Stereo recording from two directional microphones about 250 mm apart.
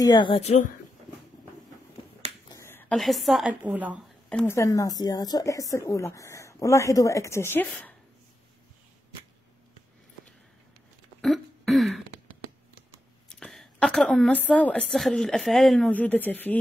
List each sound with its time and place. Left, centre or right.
0.0 s a woman's voice: centre
2.5 s a woman's voice: centre
4.3 s speech: centre
11.1 s throat clearing: centre
13.3 s a woman's voice: centre